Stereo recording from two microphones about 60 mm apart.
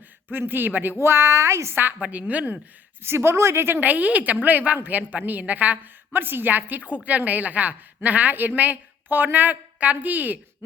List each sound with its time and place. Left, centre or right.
0.3 s a woman's voice: right
1.0 s speech: right
1.7 s a woman's voice: right
3.0 s a woman's voice: right